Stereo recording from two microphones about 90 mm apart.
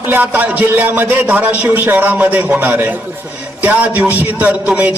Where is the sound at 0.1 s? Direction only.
20° right (ahead or behind).